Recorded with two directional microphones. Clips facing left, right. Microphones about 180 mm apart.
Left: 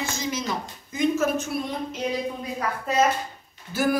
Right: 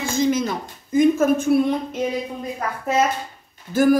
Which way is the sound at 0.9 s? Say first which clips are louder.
Right 7 dB; 50° right (ahead or behind).